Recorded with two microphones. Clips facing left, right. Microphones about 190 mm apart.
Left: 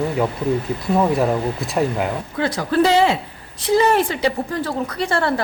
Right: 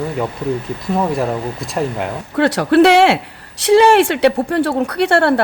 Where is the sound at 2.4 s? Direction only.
75° right (ahead or behind).